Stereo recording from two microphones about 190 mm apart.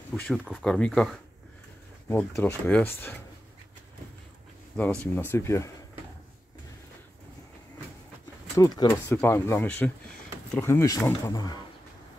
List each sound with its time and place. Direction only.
0.1 s speech: 5° left (ahead or behind)
4.7 s speech: 10° left (ahead or behind)
8.5 s speech: 20° left (ahead or behind)